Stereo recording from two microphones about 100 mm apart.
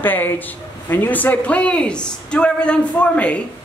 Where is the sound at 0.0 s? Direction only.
20° left (ahead or behind).